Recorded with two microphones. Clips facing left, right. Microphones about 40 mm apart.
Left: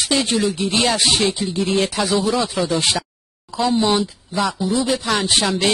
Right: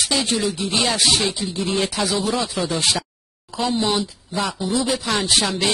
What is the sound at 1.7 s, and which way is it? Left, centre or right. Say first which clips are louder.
Speech: left 3 dB; centre.